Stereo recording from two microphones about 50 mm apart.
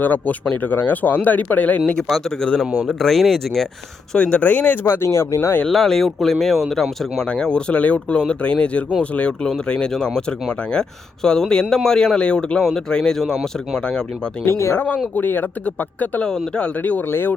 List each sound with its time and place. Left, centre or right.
0.0 s speech: left
2.8 s speech: centre
4.1 s speech: left
4.4 s speech: left
5.6 s speech: centre
7.3 s speech: centre
12.5 s speech: centre
14.4 s speech: left
14.8 s speech: left
17.1 s speech: left